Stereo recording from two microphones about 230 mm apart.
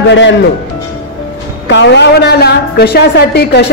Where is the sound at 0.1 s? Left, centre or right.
Left.